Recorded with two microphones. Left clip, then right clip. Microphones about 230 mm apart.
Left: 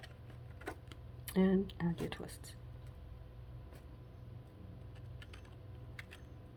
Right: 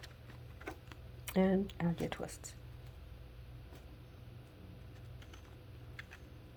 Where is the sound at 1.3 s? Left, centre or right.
Right.